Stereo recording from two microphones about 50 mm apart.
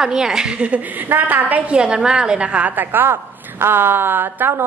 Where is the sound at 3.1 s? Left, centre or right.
Right.